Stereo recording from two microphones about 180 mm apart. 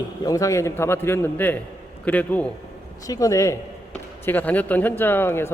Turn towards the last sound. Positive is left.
turn(degrees=10)  # may be behind; listen again after turning